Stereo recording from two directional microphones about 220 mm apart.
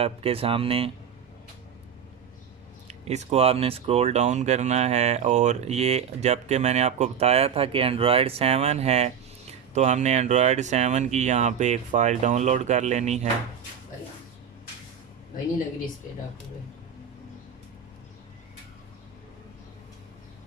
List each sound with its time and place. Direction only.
0.0 s speech: 25° right (ahead or behind)
2.8 s speech: 30° right (ahead or behind)